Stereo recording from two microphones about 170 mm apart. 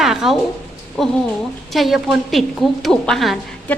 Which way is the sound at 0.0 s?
Centre (ahead or behind).